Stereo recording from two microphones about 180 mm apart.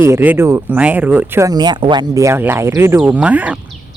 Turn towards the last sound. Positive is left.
turn(degrees=-5)  # may be behind; listen again after turning